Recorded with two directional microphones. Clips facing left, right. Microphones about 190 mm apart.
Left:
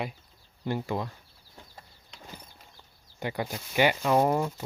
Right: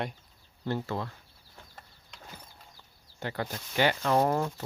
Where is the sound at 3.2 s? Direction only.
15° left (ahead or behind).